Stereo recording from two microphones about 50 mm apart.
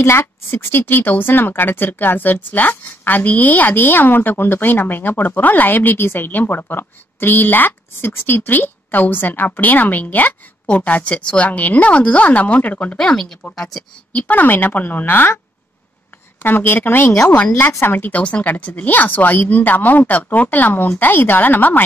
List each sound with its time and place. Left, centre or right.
0.0 s a woman's voice: left
12.9 s speech: centre
14.1 s a woman's voice: left
16.4 s a woman's voice: left
17.3 s speech: left
17.8 s a woman's voice: left
18.1 s a woman's voice: left